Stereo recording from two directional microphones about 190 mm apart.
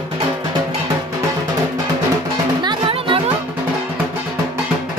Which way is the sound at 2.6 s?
25° right (ahead or behind).